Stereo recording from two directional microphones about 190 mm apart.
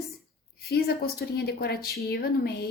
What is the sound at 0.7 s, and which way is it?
A woman's voice, 55° left (ahead or behind).